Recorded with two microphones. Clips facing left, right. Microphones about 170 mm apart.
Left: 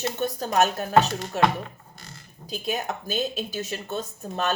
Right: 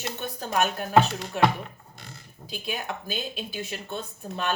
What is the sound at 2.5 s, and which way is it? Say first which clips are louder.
Speech: left 4 dB; 40° left (ahead or behind).